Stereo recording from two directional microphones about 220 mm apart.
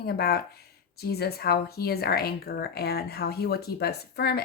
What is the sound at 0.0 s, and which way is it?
Speech, 45° left (ahead or behind).